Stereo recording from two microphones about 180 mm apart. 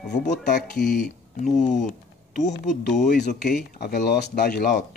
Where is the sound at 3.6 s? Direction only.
60° left (ahead or behind).